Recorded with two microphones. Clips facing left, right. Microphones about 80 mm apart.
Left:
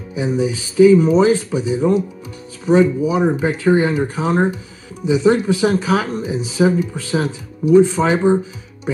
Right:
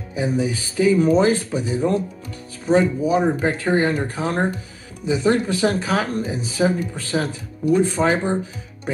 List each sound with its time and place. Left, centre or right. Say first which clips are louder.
0.2 s speech: left 3 dB; left